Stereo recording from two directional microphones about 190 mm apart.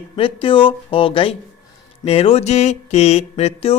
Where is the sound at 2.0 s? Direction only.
30° left (ahead or behind).